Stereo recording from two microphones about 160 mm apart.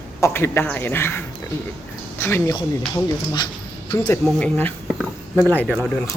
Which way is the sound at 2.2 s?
15° left (ahead or behind).